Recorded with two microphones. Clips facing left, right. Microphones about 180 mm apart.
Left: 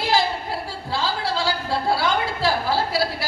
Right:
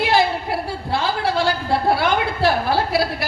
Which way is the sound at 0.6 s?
60° right (ahead or behind).